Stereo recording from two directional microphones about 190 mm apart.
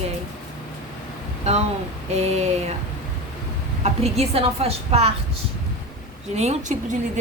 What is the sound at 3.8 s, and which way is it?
A woman's voice, 35° right (ahead or behind).